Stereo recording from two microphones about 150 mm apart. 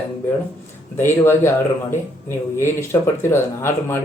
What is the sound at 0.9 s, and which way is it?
Speech, 15° left (ahead or behind).